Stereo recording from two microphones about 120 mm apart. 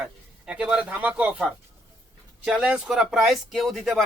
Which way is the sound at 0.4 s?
5° right (ahead or behind).